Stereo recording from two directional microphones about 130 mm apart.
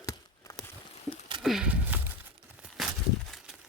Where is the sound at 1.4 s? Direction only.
5° right (ahead or behind).